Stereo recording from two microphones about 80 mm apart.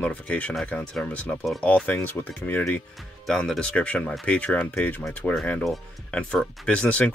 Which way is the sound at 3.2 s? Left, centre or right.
Centre.